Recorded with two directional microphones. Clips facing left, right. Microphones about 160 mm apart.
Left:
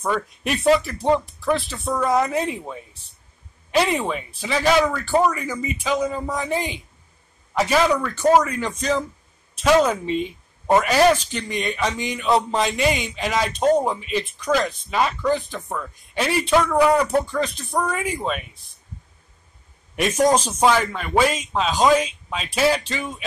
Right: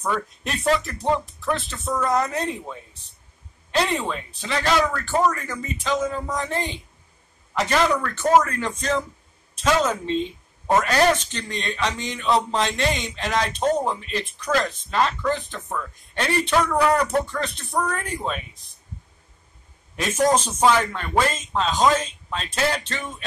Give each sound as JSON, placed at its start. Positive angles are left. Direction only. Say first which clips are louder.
{"t": 0.0, "sound": "speech", "louder": "left 2 dB", "side_deg": 10}
{"t": 20.4, "sound": "speech", "louder": "left 1 dB", "side_deg": 10}